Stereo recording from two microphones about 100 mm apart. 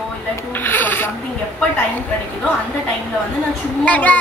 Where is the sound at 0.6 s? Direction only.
20° left (ahead or behind).